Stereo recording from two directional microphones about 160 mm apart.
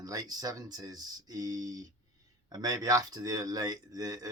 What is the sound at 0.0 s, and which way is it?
Speech, 25° right (ahead or behind).